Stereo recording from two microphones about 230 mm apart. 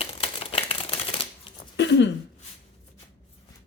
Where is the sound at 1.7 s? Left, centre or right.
Left.